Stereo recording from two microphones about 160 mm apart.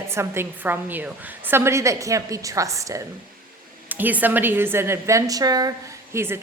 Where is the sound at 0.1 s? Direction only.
15° right (ahead or behind).